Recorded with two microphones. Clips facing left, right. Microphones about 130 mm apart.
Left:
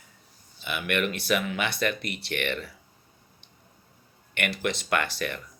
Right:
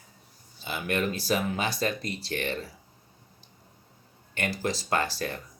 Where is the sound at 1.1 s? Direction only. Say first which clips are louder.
Even; 70° left (ahead or behind).